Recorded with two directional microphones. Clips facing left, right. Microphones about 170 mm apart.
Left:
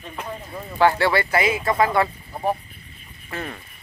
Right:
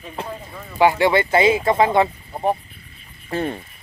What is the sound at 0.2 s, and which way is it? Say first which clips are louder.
Speech: right 3 dB; 30° right (ahead or behind).